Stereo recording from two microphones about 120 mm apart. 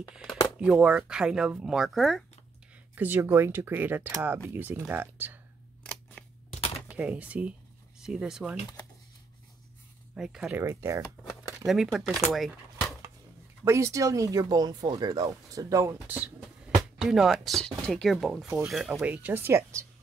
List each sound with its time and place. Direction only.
0.1 s speech: 5° right (ahead or behind)
3.0 s speech: 20° right (ahead or behind)
6.2 s typewriter: 10° left (ahead or behind)
6.9 s speech: 10° right (ahead or behind)
10.1 s speech: 5° right (ahead or behind)
10.6 s speech: 25° right (ahead or behind)
11.6 s speech: centre (ahead or behind)
12.3 s a sound: centre (ahead or behind)
13.7 s speech: 25° right (ahead or behind)
17.0 s speech: centre (ahead or behind)
18.9 s speech: 10° right (ahead or behind)